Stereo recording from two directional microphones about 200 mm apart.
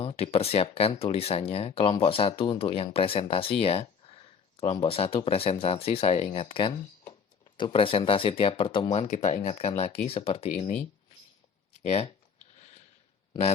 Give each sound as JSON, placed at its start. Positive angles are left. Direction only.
{"t": 0.0, "sound": "speech", "side_deg": 30}